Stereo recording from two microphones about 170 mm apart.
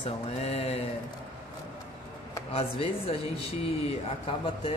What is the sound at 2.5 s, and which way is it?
Speech, 35° left (ahead or behind).